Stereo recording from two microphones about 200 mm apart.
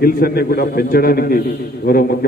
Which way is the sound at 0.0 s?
45° left (ahead or behind).